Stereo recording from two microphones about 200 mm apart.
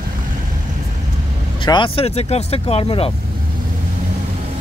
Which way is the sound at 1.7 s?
25° left (ahead or behind).